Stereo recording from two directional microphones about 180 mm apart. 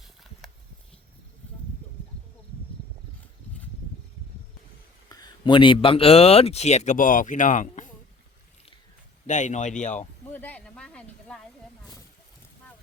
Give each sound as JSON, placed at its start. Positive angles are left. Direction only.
{"t": 5.0, "sound": "speech", "side_deg": 20}
{"t": 9.2, "sound": "speech", "side_deg": 40}
{"t": 10.3, "sound": "speech", "side_deg": 10}